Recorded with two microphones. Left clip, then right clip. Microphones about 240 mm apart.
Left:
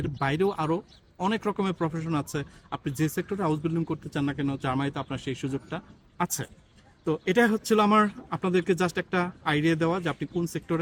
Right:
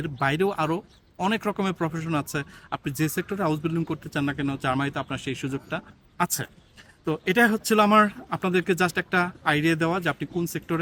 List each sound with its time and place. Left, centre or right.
0.0 s speech: centre